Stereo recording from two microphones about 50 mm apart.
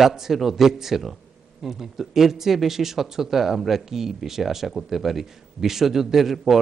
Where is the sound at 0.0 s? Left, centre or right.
Centre.